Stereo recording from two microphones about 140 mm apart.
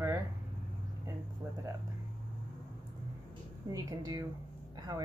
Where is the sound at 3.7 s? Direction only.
25° right (ahead or behind).